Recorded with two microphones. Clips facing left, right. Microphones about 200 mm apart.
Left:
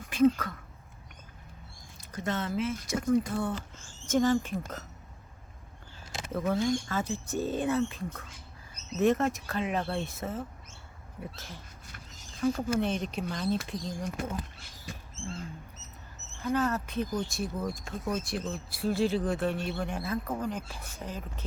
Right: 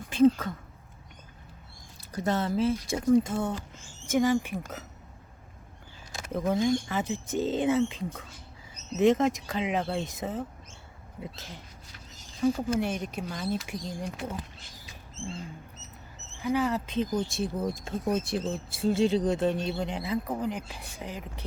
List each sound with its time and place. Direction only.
0.1 s a sound: 25° right (ahead or behind)
2.0 s speech: 35° right (ahead or behind)
2.9 s speech: 25° right (ahead or behind)
4.0 s speech: 10° right (ahead or behind)
6.5 s speech: 15° right (ahead or behind)
9.0 s speech: 15° right (ahead or behind)
16.4 s speech: 10° right (ahead or behind)